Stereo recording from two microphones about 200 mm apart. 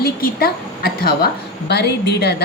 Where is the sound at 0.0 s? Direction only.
50° left (ahead or behind).